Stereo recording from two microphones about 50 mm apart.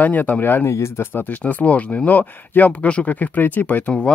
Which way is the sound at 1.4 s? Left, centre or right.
Left.